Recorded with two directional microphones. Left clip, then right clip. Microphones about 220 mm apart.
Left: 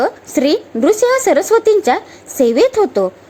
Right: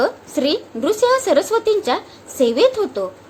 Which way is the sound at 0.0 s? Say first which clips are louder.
Left 4 dB; 30° left (ahead or behind).